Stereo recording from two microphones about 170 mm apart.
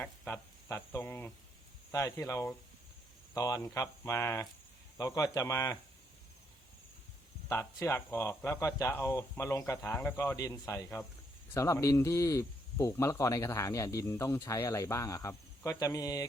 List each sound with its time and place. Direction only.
0.0 s speech: 10° left (ahead or behind)
7.4 s speech: 15° left (ahead or behind)